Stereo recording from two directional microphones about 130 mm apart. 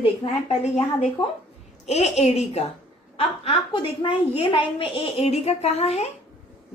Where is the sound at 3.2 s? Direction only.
45° left (ahead or behind).